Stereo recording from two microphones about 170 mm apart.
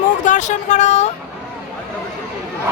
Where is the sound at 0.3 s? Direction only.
45° left (ahead or behind).